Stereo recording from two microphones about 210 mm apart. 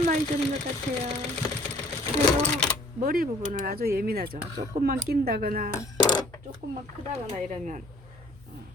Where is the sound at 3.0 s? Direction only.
45° right (ahead or behind).